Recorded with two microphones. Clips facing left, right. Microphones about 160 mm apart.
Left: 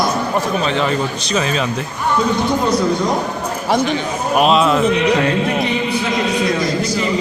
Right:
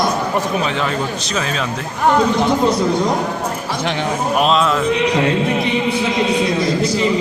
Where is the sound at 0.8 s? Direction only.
Centre (ahead or behind).